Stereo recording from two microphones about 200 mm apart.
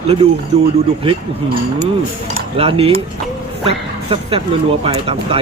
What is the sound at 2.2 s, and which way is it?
Speech, 30° right (ahead or behind).